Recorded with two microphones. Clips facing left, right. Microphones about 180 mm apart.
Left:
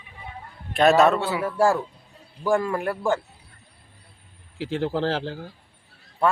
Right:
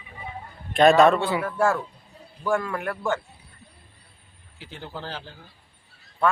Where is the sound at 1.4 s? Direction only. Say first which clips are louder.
Left 2 dB; 30° left (ahead or behind).